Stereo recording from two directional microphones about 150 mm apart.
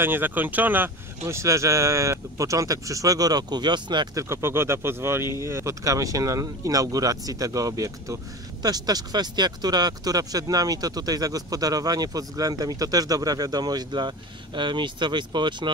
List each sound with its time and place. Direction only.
0.0 s speech: 15° right (ahead or behind); by 15.7 s 30° right (ahead or behind)